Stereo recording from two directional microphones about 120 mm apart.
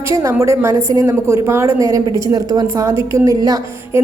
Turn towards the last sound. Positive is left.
turn(degrees=-30)  # may be behind; listen again after turning